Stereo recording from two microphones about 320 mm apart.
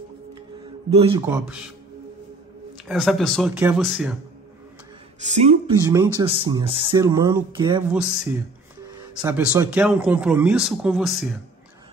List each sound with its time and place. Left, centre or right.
0.9 s speech: centre
1.2 s a man's voice: centre
2.9 s a man's voice: centre
5.3 s speech: centre
7.9 s a man's voice: centre